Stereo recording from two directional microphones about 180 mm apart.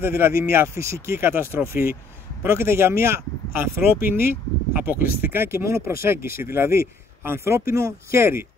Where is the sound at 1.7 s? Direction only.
55° left (ahead or behind).